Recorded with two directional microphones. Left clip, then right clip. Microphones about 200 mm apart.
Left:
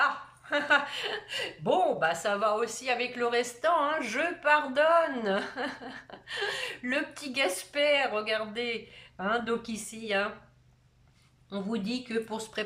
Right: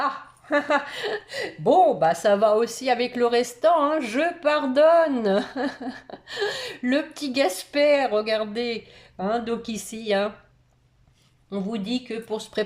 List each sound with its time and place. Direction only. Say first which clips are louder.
0.0 s a woman's voice: right 1 dB; 25° right (ahead or behind)
11.5 s speech: right 5 dB; 10° right (ahead or behind)